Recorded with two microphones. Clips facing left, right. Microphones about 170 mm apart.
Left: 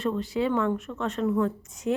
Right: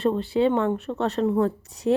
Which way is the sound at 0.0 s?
30° right (ahead or behind).